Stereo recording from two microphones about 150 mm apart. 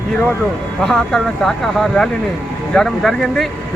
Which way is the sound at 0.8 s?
5° left (ahead or behind).